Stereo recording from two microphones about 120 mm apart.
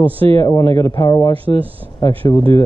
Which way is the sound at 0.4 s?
25° left (ahead or behind).